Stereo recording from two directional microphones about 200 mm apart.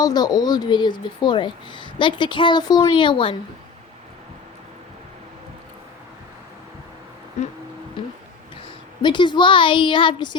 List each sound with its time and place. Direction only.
0.0 s speech: 20° left (ahead or behind)
9.0 s speech: 20° left (ahead or behind)